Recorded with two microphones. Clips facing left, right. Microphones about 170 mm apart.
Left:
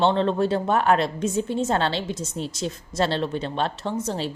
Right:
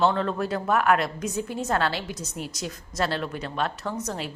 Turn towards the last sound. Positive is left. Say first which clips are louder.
# left 4 dB
turn(degrees=30)  # may be behind; listen again after turning